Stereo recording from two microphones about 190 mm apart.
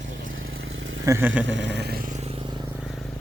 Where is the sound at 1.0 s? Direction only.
10° right (ahead or behind).